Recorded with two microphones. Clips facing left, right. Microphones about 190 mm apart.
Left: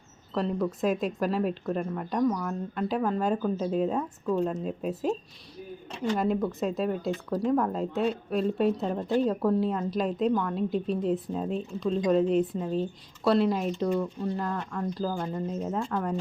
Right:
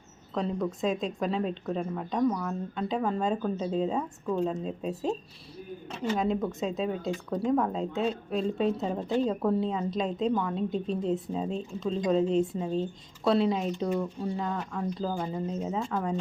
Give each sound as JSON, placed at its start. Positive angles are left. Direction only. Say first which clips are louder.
{"t": 0.3, "sound": "speech", "louder": "left 2 dB", "side_deg": 0}
{"t": 6.1, "sound": "speech", "louder": "left 1 dB", "side_deg": 5}